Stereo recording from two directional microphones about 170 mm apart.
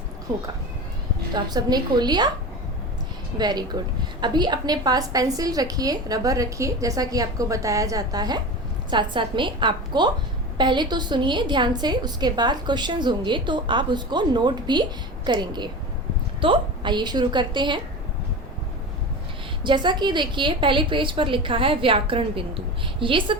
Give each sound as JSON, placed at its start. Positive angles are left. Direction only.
{"t": 1.3, "sound": "a woman's voice", "side_deg": -25}
{"t": 3.3, "sound": "a woman's voice", "side_deg": -25}
{"t": 19.6, "sound": "a woman's voice", "side_deg": -25}